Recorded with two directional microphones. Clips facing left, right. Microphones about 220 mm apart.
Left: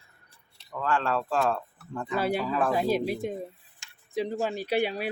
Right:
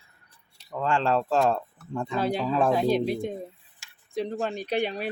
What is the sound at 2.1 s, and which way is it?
Speech, 5° left (ahead or behind).